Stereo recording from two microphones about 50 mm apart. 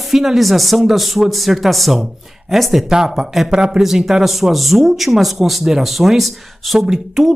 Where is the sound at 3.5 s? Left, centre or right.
Centre.